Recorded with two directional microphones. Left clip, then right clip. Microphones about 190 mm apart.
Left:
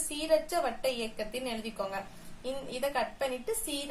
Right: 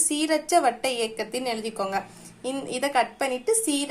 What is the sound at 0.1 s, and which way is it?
A woman's voice, 35° right (ahead or behind).